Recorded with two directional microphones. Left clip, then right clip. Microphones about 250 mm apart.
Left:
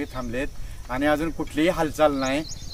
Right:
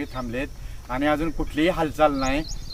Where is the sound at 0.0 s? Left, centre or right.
Centre.